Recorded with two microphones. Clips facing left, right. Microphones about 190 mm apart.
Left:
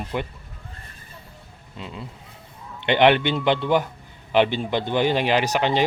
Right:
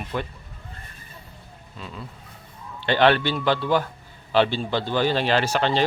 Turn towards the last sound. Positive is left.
turn(degrees=15)  # may be behind; listen again after turning